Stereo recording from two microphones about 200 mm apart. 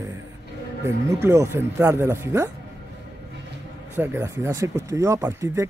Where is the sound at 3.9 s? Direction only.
10° right (ahead or behind).